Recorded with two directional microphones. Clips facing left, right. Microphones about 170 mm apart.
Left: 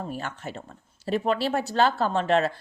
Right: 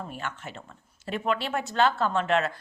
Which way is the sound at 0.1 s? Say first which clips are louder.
Left 3 dB; 35° left (ahead or behind).